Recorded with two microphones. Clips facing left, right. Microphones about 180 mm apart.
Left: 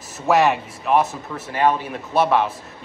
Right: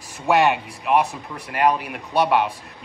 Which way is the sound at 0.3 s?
Centre (ahead or behind).